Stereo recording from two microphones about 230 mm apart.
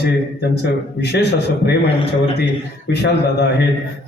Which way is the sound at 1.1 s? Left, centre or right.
Left.